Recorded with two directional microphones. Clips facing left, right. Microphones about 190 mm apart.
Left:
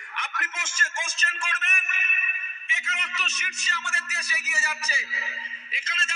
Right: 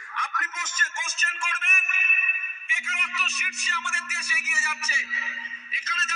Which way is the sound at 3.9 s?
35° left (ahead or behind).